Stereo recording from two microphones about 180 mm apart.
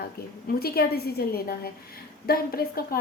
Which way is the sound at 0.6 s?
60° left (ahead or behind).